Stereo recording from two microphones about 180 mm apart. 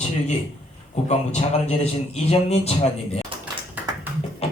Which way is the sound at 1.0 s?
40° left (ahead or behind).